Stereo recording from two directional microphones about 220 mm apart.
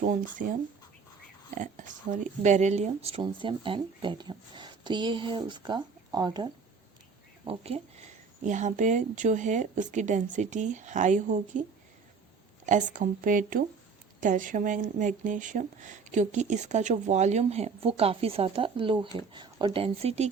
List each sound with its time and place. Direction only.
0.0 s speech: 35° right (ahead or behind)
12.6 s speech: 35° right (ahead or behind)